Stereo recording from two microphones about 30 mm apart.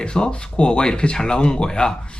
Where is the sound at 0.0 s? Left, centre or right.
Left.